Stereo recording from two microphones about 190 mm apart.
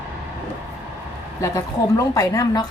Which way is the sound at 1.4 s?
15° left (ahead or behind).